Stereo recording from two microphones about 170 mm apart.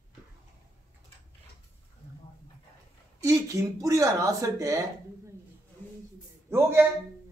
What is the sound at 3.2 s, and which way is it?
Speech, 20° right (ahead or behind).